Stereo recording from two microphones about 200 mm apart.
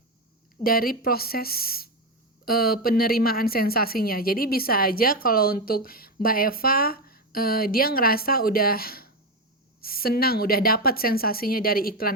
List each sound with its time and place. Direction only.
0.6 s a woman's voice: 45° left (ahead or behind)